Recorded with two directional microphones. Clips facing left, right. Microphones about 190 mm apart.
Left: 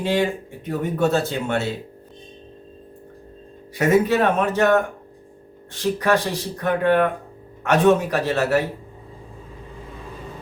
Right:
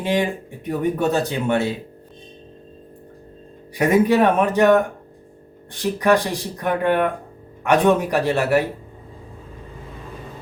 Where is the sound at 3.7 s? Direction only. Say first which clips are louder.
Right 1 dB; 15° right (ahead or behind).